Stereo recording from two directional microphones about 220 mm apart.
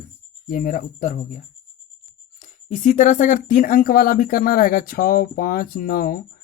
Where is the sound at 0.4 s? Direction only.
40° left (ahead or behind).